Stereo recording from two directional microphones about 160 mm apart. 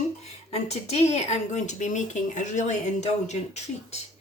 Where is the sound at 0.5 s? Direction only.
40° left (ahead or behind).